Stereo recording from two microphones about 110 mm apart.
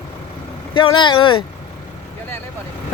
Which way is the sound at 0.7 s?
50° left (ahead or behind).